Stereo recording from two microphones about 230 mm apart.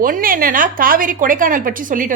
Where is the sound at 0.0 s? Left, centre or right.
Right.